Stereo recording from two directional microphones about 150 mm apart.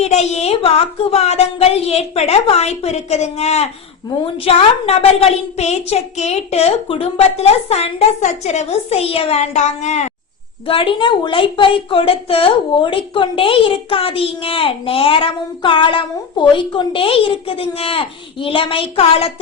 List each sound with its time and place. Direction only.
0.0 s a woman's voice: 45° left (ahead or behind)
10.7 s a woman's voice: 35° left (ahead or behind)